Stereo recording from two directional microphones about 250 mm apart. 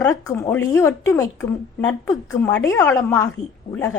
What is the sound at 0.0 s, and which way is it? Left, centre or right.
A woman's voice, centre.